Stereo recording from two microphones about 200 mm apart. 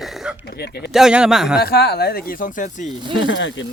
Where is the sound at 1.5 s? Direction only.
50° left (ahead or behind).